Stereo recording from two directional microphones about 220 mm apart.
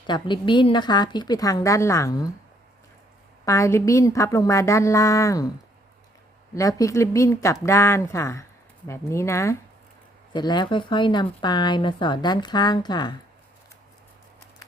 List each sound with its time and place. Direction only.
0.1 s speech: 20° left (ahead or behind)
3.4 s a woman's voice: 15° left (ahead or behind)
6.5 s a woman's voice: 15° left (ahead or behind)